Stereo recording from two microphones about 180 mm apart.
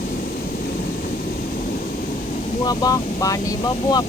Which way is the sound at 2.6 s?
20° left (ahead or behind).